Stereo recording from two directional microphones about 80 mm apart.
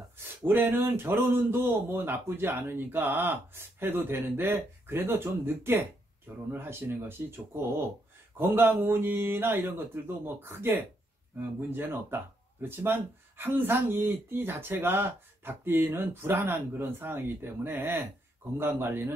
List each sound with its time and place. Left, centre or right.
0.5 s a man's voice: right